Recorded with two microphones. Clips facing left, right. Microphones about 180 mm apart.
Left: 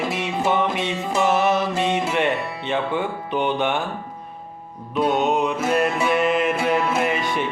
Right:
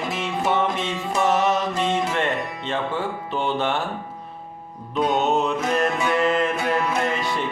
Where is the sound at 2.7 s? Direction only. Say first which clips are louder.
Left 3 dB; 15° left (ahead or behind).